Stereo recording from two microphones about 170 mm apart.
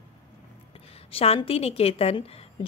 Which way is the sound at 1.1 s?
35° left (ahead or behind).